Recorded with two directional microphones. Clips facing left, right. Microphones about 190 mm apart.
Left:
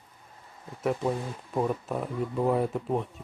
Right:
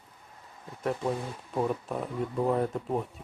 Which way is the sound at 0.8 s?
5° left (ahead or behind).